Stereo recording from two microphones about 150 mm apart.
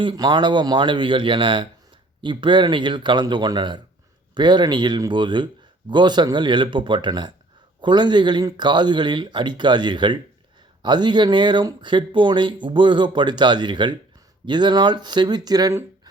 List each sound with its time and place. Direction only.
0.0 s speech: 30° right (ahead or behind)